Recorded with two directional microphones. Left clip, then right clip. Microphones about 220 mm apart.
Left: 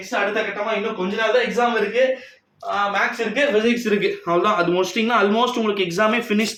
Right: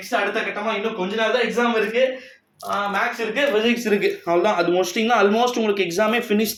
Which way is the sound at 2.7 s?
5° right (ahead or behind).